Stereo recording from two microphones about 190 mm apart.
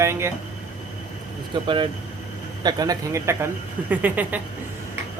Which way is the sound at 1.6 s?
25° right (ahead or behind).